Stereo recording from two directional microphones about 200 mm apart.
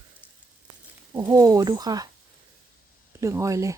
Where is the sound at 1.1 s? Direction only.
15° right (ahead or behind).